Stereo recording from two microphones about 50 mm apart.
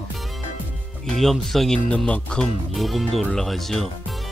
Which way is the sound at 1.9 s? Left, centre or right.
Left.